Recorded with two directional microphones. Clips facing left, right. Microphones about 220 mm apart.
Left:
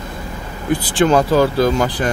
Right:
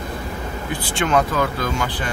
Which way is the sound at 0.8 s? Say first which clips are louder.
Left 5 dB; 35° left (ahead or behind).